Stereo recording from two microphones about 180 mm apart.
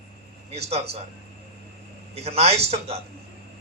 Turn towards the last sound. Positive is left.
turn(degrees=-35)  # may be behind; listen again after turning